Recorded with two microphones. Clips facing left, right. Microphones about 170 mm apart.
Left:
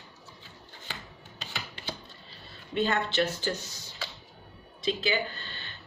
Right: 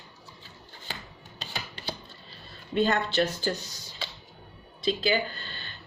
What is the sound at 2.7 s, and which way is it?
Speech, 40° right (ahead or behind).